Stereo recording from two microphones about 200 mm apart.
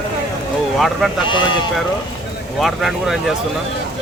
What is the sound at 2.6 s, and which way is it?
Speech, centre (ahead or behind).